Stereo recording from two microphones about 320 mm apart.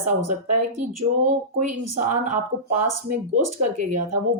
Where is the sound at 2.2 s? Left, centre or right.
Right.